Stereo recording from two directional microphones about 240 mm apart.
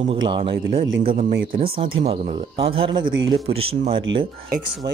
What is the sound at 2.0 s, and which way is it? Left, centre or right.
Speech, right.